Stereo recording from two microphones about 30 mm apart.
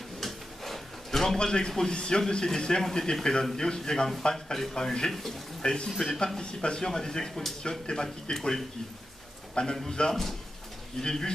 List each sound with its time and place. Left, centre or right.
0.2 s drawer open or close: centre
1.4 s speech: left
5.9 s speech: centre
6.1 s speech: left
9.6 s a man's voice: left
11.0 s speech: centre